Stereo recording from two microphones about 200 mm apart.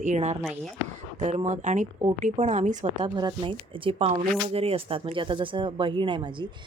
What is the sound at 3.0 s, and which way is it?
Speech, 20° right (ahead or behind).